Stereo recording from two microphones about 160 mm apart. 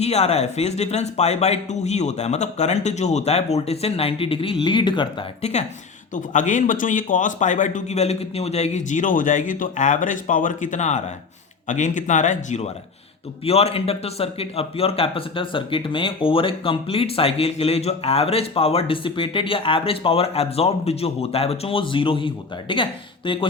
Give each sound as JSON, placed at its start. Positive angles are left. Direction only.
{"t": 0.0, "sound": "a man's voice", "side_deg": 40}
{"t": 5.4, "sound": "a man's voice", "side_deg": 45}